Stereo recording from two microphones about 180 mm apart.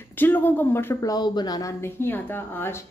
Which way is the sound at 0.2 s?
10° left (ahead or behind).